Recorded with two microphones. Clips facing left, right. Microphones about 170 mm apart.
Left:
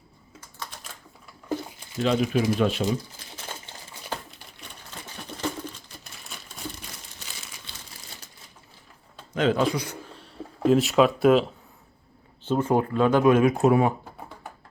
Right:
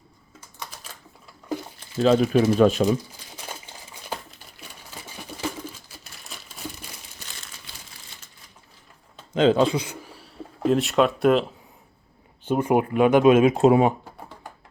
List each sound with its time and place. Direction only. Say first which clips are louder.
2.0 s speech: right 5 dB; 40° right (ahead or behind)
4.3 s a sound: even; centre (ahead or behind)
9.3 s speech: right 4 dB; 25° right (ahead or behind); by 11.5 s centre (ahead or behind)
12.5 s speech: right 2 dB; 15° right (ahead or behind)